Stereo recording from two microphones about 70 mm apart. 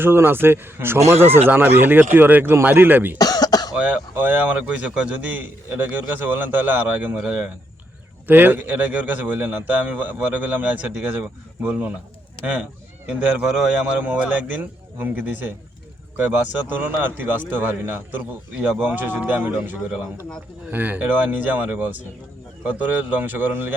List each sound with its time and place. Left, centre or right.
0.0 s speech: right
3.2 s cough: left
3.8 s a man's voice: right
8.3 s a man's voice: right
14.0 s a man's voice: right